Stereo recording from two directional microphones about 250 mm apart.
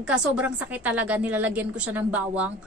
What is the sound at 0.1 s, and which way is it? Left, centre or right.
A woman's voice, centre.